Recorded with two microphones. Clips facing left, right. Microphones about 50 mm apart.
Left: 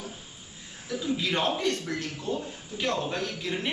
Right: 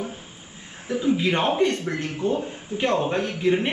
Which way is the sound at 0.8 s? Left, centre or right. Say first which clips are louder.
Right 7 dB; right.